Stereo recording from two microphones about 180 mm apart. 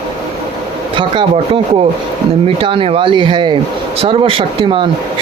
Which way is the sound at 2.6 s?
30° right (ahead or behind).